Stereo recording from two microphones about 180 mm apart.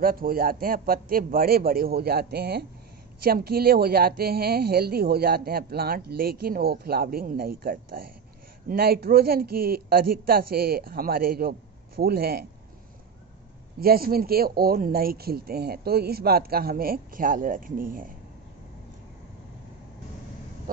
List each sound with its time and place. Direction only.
0.0 s speech: 55° right (ahead or behind)
13.7 s speech: 55° right (ahead or behind)